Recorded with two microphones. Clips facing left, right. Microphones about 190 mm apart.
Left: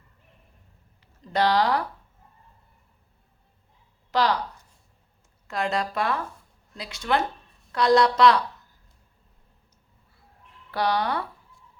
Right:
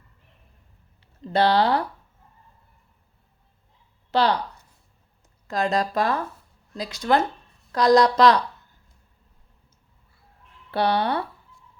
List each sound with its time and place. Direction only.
1.3 s speech: 30° right (ahead or behind)
4.1 s speech: 30° right (ahead or behind)
5.5 s speech: 35° right (ahead or behind)
10.7 s speech: 30° right (ahead or behind)